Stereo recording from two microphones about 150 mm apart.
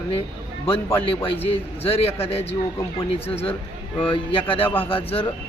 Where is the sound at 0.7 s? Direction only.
20° left (ahead or behind).